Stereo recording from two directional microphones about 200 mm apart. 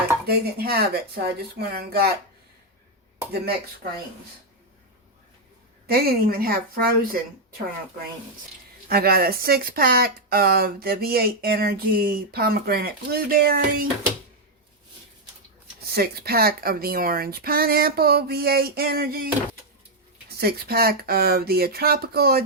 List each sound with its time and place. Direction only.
0.3 s speech: 50° right (ahead or behind)
5.9 s speech: 50° right (ahead or behind)
8.9 s speech: 50° right (ahead or behind)
15.9 s speech: 50° right (ahead or behind)